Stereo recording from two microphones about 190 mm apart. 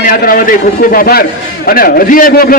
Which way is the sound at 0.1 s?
50° left (ahead or behind).